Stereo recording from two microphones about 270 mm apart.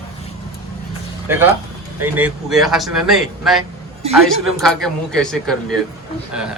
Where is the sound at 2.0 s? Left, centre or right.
Centre.